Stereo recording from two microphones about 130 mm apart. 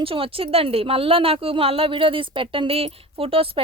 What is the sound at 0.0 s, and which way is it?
A woman's voice, 45° right (ahead or behind).